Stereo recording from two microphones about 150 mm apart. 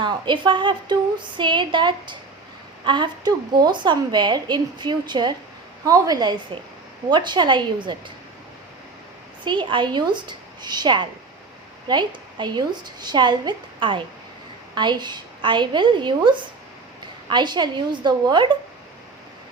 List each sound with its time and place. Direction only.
0.0 s a woman's voice: 30° right (ahead or behind)
9.4 s a woman's voice: 30° right (ahead or behind)